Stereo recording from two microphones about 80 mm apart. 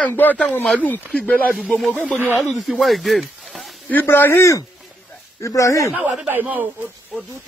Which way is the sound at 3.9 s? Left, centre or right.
Left.